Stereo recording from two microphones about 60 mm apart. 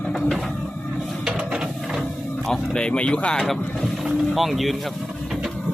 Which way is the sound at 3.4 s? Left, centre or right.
Centre.